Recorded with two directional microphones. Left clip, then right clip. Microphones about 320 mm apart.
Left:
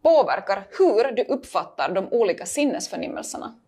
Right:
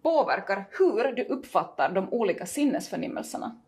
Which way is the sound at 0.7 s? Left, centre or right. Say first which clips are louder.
Left 6 dB; left.